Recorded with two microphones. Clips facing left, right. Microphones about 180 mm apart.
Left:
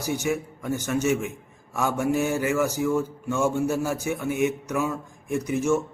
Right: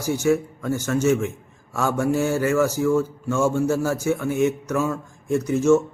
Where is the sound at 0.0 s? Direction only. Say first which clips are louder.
Right 6 dB; 15° left (ahead or behind).